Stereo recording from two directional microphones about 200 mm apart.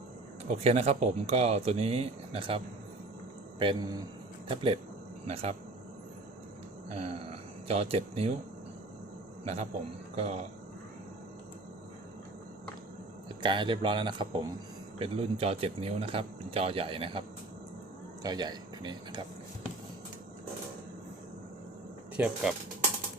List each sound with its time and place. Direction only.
0.4 s speech: 30° right (ahead or behind)
3.6 s speech: 20° right (ahead or behind)
6.9 s speech: 30° right (ahead or behind)
10.2 s speech: 30° right (ahead or behind)
13.2 s speech: 25° right (ahead or behind)
22.1 s speech: 5° right (ahead or behind)